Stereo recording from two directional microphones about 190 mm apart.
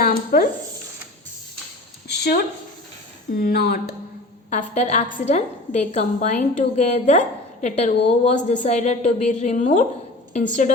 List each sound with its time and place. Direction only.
0.0 s speech: 50° left (ahead or behind)
2.0 s a sound: 60° left (ahead or behind)
3.3 s speech: 55° left (ahead or behind)
4.4 s a woman's voice: 40° left (ahead or behind)